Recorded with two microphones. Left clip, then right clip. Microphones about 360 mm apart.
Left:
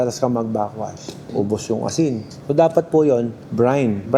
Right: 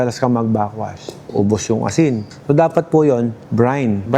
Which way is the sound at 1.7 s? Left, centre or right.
Right.